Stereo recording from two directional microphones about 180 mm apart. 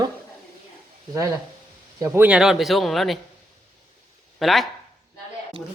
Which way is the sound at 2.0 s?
10° right (ahead or behind).